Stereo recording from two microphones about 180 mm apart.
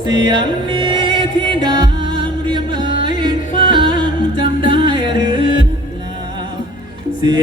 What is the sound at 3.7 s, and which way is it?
Music, 25° right (ahead or behind).